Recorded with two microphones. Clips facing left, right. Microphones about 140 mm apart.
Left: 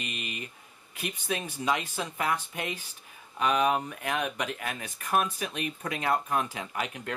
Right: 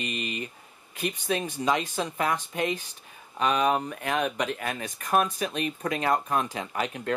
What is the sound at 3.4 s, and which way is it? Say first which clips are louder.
Speech: right 1 dB; 35° right (ahead or behind).